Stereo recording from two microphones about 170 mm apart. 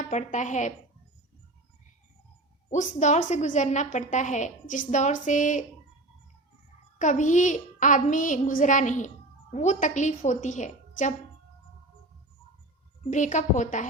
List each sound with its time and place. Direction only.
0.1 s a child's voice: 45° left (ahead or behind)
2.6 s a child's voice: 45° left (ahead or behind)
7.0 s a child's voice: 45° left (ahead or behind)
13.1 s a child's voice: 45° left (ahead or behind)